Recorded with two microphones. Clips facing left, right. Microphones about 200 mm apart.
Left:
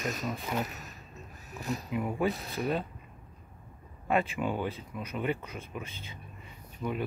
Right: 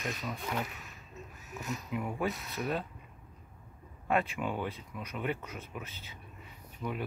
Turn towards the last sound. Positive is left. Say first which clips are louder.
# left 3 dB
turn(degrees=0)  # may be behind; listen again after turning